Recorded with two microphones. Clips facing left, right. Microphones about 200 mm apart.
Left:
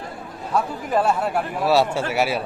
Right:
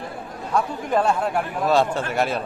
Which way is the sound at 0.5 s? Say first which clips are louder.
Even; 5° left (ahead or behind).